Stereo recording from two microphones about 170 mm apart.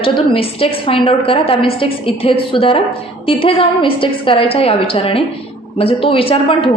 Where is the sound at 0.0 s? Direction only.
30° left (ahead or behind).